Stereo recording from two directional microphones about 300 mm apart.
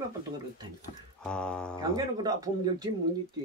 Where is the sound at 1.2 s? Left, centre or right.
Centre.